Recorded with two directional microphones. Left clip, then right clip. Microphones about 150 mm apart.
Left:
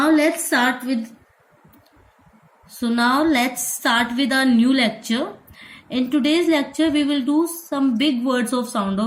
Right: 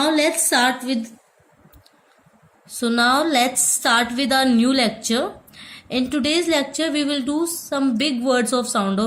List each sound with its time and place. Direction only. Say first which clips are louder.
0.0 s a woman's voice: left 1 dB; 45° right (ahead or behind)
2.8 s a woman's voice: right 1 dB; 50° right (ahead or behind)